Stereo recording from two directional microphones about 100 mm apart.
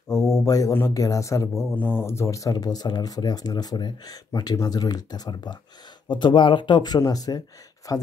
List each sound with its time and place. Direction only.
0.3 s speech: 35° left (ahead or behind)
1.8 s speech: 20° left (ahead or behind); by 8.0 s 40° left (ahead or behind)